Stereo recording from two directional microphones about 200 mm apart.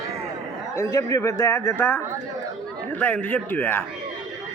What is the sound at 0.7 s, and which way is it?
Speech, 15° left (ahead or behind).